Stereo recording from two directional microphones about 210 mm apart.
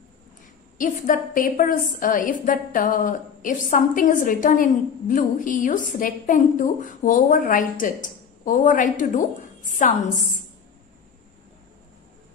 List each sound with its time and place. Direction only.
0.7 s a woman's voice: 40° left (ahead or behind)